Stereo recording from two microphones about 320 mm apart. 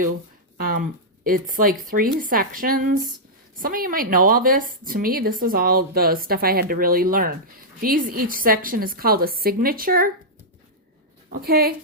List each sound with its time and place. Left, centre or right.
0.6 s a woman's voice: right
11.3 s a woman's voice: right